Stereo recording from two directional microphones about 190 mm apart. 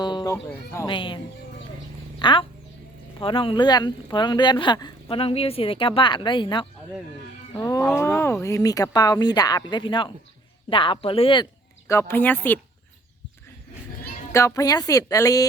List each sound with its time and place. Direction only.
0.0 s speech: 25° left (ahead or behind)
2.1 s a sound: 25° left (ahead or behind)
3.2 s speech: 25° left (ahead or behind)
11.9 s speech: 15° left (ahead or behind)
14.3 s speech: 15° left (ahead or behind)